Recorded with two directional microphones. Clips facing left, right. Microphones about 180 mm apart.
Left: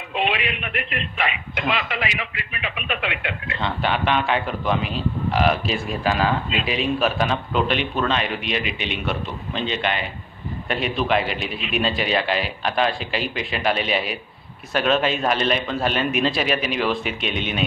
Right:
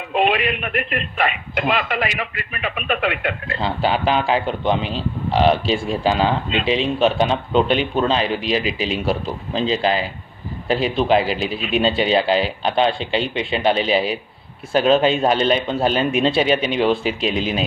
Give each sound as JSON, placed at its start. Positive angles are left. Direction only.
{"t": 0.1, "sound": "a man's voice", "side_deg": -45}
{"t": 3.5, "sound": "a man's voice", "side_deg": -30}